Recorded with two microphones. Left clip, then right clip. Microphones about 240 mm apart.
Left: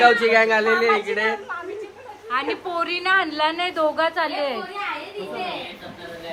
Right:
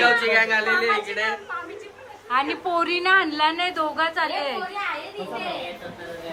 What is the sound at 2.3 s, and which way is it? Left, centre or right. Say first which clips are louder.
A woman's voice: right 2 dB; centre.